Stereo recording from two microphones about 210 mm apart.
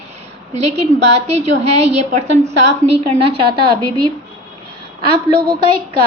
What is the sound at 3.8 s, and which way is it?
Speech, 20° right (ahead or behind).